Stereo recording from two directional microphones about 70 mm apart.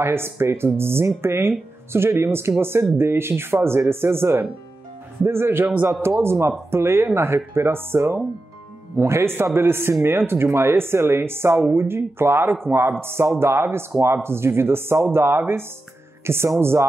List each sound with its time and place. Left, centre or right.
0.0 s speech: right